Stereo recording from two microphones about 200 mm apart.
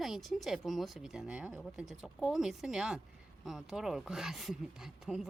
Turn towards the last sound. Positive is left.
turn(degrees=0)  # may be behind; listen again after turning